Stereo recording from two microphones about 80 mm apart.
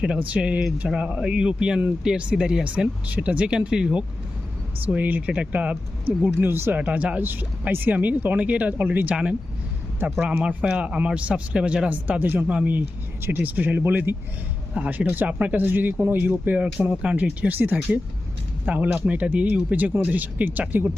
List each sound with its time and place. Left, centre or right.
0.0 s speech: centre
10.2 s speech: centre